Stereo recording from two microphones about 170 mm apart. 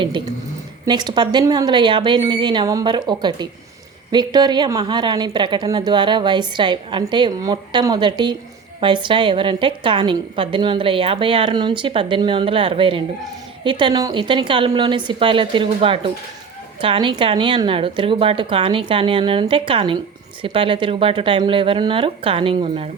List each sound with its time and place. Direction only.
0.9 s a woman's voice: 25° right (ahead or behind)